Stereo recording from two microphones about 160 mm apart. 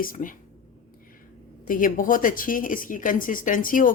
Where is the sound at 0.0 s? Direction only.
60° left (ahead or behind).